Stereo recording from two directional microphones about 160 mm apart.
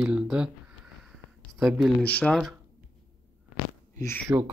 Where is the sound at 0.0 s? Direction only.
5° right (ahead or behind).